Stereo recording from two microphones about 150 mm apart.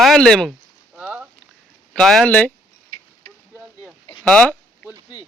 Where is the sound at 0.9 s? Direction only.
10° right (ahead or behind).